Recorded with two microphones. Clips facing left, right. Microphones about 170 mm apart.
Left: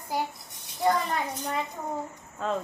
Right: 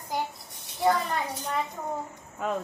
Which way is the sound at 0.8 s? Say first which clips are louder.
Right 1 dB; centre (ahead or behind).